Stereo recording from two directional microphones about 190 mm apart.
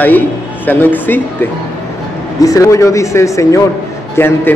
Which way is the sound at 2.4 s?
20° left (ahead or behind).